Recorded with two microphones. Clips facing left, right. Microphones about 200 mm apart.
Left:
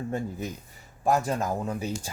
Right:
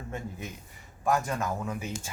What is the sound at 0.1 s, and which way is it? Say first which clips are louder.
Speech: left 6 dB; 35° left (ahead or behind).